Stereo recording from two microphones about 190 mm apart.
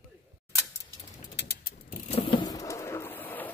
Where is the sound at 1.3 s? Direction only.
55° left (ahead or behind).